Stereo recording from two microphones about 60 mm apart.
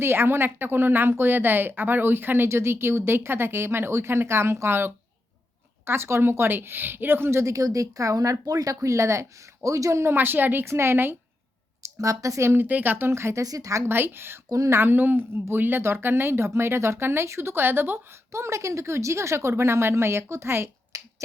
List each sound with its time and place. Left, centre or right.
0.0 s a woman's voice: right
7.3 s speech: right
10.2 s a woman's voice: right
10.7 s a woman's voice: right
11.9 s speech: right
12.5 s a woman's voice: right
13.1 s speech: right
13.4 s speech: right
13.9 s a woman's voice: right
14.5 s speech: right
14.8 s a woman's voice: right
18.3 s speech: right
20.9 s finger snapping: right